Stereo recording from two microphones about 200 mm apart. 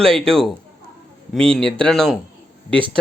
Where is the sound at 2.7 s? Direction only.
25° right (ahead or behind).